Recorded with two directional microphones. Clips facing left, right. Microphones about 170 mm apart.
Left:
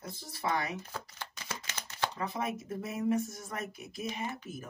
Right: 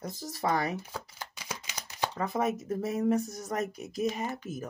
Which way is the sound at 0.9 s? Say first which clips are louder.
Right 2 dB; 15° right (ahead or behind).